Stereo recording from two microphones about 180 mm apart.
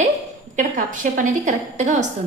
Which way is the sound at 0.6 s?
45° right (ahead or behind).